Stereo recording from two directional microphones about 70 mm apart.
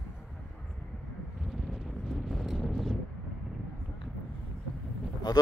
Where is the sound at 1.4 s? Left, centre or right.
Centre.